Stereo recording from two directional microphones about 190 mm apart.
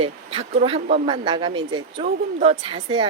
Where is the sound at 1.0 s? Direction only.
25° right (ahead or behind).